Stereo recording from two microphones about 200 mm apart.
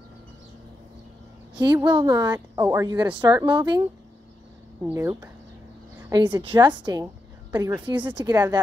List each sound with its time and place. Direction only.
1.6 s a woman's voice: 20° right (ahead or behind)
4.8 s speech: 10° right (ahead or behind)
5.9 s a sound: 15° right (ahead or behind)
6.2 s a woman's voice: 25° right (ahead or behind)